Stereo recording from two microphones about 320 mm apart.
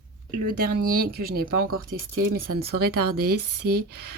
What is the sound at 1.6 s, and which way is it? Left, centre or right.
Speech, right.